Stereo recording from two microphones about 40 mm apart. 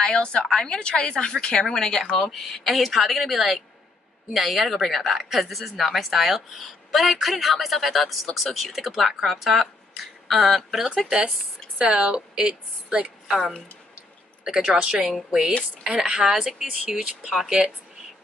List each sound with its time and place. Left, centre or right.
0.0 s a woman's voice: centre
12.0 s speech: right
13.0 s speech: centre
14.4 s speech: centre